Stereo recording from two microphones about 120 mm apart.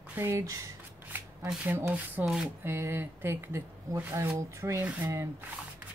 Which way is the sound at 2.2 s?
5° right (ahead or behind).